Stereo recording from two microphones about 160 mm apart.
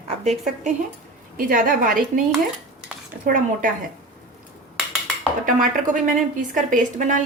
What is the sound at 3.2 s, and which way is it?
Speech, 55° right (ahead or behind).